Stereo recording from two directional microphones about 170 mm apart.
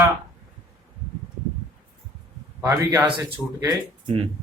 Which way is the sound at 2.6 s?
10° right (ahead or behind).